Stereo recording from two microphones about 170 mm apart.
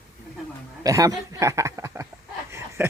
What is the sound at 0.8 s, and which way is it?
Speech, 20° right (ahead or behind).